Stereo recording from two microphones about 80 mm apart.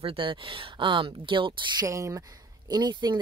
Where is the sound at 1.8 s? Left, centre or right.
Right.